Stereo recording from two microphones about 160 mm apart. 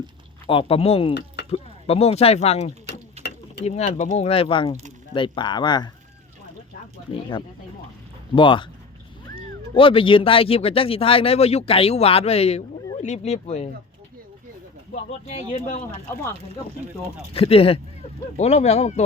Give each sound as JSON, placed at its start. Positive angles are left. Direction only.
{"t": 0.4, "sound": "speech", "side_deg": 35}
{"t": 3.2, "sound": "mechanisms", "side_deg": -40}
{"t": 3.6, "sound": "speech", "side_deg": 45}
{"t": 7.1, "sound": "speech", "side_deg": 30}
{"t": 9.7, "sound": "speech", "side_deg": 35}
{"t": 15.3, "sound": "speech", "side_deg": 45}
{"t": 17.3, "sound": "speech", "side_deg": 35}